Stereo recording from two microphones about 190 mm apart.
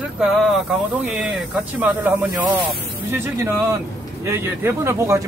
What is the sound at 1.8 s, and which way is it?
Speech, 10° right (ahead or behind).